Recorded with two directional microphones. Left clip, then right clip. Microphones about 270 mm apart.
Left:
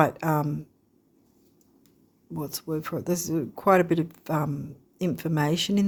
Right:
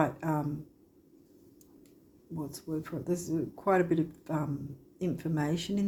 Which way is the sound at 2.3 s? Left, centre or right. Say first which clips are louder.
Left 6 dB; left.